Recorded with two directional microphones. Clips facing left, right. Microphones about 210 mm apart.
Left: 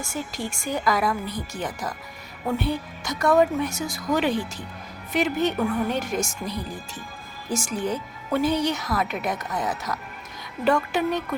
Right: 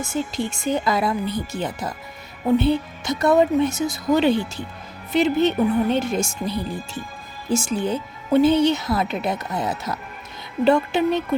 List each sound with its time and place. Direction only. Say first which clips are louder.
0.0 s speech: right 6 dB; 25° right (ahead or behind)